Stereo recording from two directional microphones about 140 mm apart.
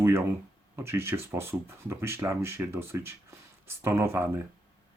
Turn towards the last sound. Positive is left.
turn(degrees=-15)  # may be behind; listen again after turning